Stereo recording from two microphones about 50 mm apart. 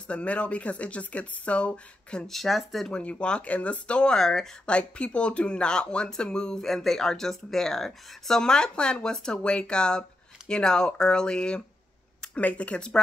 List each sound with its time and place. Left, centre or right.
0.1 s speech: left
2.2 s speech: centre
2.9 s speech: left
12.4 s speech: left